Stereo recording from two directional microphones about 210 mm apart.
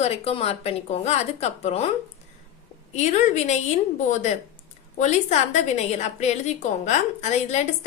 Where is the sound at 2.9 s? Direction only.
35° left (ahead or behind).